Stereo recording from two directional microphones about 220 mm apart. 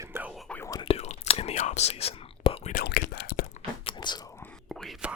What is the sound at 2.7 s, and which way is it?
Whispering, 45° left (ahead or behind).